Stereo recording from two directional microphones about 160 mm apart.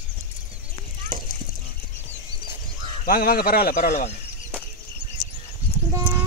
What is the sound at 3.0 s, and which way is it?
A man's voice, 65° left (ahead or behind).